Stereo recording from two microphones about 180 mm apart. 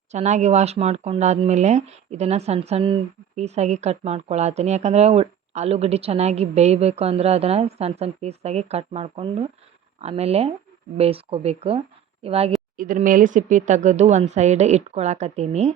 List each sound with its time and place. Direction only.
0.1 s speech: 40° right (ahead or behind)
12.7 s speech: 50° right (ahead or behind)